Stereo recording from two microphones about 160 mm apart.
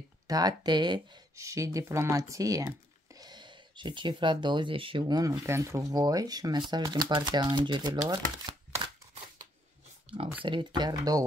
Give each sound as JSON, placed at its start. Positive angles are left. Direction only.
{"t": 0.3, "sound": "speech", "side_deg": -25}
{"t": 10.0, "sound": "a sound", "side_deg": -35}
{"t": 10.4, "sound": "speech", "side_deg": -30}